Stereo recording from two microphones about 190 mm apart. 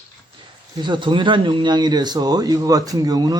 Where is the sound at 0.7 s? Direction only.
25° right (ahead or behind).